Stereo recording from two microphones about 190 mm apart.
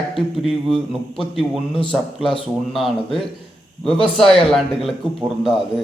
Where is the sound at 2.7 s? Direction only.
Centre (ahead or behind).